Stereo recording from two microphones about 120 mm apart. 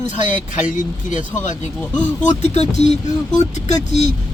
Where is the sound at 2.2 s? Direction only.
70° left (ahead or behind).